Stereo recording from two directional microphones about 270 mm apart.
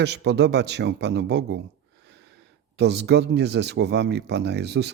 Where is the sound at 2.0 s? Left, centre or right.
Right.